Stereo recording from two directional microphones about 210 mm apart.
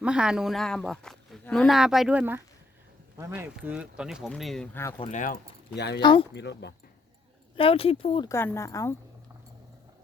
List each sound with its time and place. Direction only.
0.0 s a man's voice: 5° right (ahead or behind)
4.9 s speech: 25° left (ahead or behind)
5.2 s speech: 50° left (ahead or behind)
6.0 s speech: 20° left (ahead or behind)
6.3 s speech: 55° left (ahead or behind)
7.5 s speech: 25° left (ahead or behind)
8.3 s speech: 10° left (ahead or behind)